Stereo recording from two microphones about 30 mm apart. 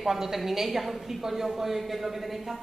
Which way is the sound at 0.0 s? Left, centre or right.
Centre.